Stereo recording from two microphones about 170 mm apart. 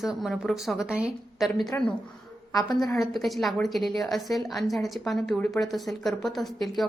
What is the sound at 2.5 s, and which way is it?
Speech, 20° left (ahead or behind).